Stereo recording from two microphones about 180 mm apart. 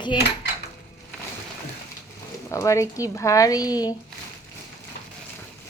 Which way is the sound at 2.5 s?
15° left (ahead or behind).